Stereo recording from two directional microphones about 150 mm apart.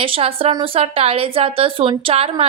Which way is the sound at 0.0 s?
40° right (ahead or behind).